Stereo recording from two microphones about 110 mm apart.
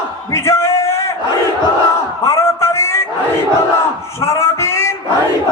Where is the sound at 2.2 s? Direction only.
25° left (ahead or behind).